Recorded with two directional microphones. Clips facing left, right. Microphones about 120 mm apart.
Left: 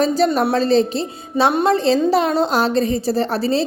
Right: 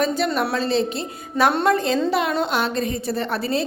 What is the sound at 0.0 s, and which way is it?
A woman's voice, 35° left (ahead or behind).